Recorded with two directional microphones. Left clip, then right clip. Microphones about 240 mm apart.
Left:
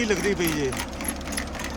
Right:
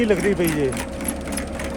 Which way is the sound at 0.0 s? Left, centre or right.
Centre.